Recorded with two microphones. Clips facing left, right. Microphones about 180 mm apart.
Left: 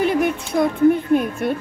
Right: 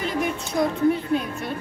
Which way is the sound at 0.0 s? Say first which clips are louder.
Left 7 dB; 60° left (ahead or behind).